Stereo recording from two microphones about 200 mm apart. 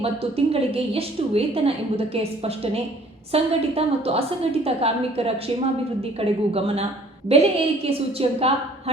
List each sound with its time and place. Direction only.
0.0 s a woman's voice: 30° right (ahead or behind)